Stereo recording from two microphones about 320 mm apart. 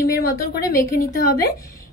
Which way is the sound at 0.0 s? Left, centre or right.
Left.